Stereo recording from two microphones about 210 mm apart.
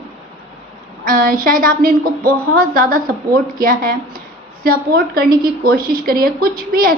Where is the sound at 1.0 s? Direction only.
45° right (ahead or behind).